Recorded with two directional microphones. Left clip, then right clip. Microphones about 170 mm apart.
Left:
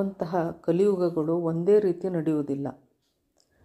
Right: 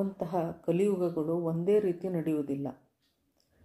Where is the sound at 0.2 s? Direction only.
25° left (ahead or behind).